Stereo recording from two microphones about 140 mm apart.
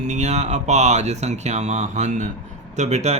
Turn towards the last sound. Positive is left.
turn(degrees=-50)  # may be behind; listen again after turning